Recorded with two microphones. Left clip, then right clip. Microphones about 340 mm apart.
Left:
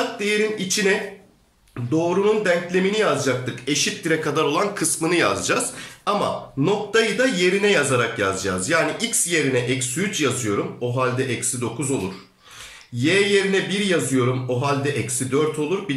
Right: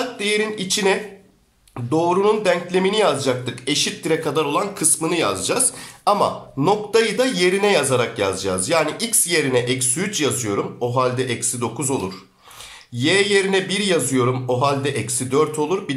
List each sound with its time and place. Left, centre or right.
0.2 s speech: centre
12.9 s speech: centre